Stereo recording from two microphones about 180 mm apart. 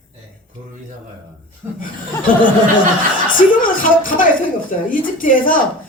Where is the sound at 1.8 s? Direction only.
50° left (ahead or behind).